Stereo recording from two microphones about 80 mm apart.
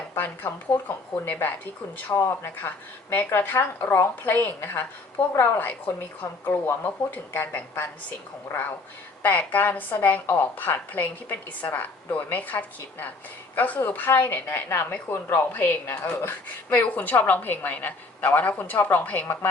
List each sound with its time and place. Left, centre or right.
0.2 s a woman's voice: left
2.1 s speech: left
2.6 s a woman's voice: left
9.2 s a woman's voice: left